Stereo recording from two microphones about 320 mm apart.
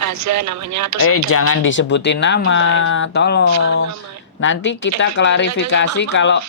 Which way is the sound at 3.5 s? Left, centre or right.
Right.